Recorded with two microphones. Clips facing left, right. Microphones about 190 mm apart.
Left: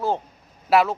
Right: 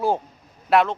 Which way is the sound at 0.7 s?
5° left (ahead or behind).